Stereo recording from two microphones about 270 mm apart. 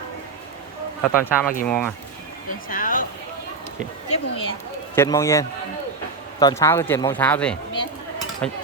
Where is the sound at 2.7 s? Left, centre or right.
Left.